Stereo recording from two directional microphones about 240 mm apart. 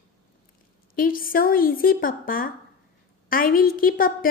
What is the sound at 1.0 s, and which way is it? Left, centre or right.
A woman's voice, left.